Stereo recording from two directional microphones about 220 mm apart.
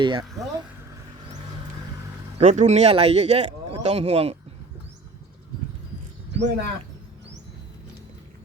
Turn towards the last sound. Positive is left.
turn(degrees=-50)  # may be behind; listen again after turning